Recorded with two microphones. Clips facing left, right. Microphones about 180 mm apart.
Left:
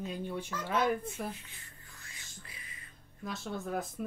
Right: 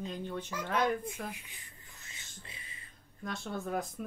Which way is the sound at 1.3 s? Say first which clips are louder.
Left 1 dB; 20° right (ahead or behind).